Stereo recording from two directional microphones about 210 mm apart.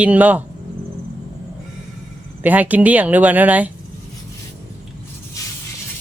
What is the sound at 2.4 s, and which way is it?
Speech, 10° right (ahead or behind).